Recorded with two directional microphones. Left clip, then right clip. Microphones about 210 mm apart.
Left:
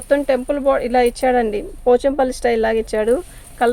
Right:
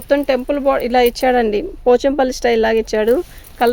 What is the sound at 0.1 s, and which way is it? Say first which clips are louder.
Speech: right 1 dB; 45° right (ahead or behind).